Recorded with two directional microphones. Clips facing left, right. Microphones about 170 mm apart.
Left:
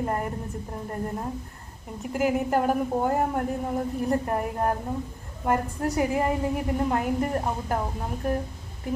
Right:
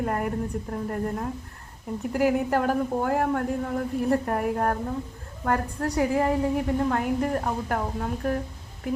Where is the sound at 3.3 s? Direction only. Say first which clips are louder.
Right 1 dB; 15° left (ahead or behind).